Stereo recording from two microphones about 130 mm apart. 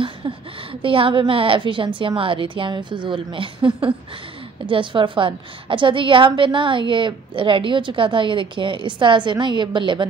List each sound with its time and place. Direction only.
0.8 s a woman's voice: 40° right (ahead or behind)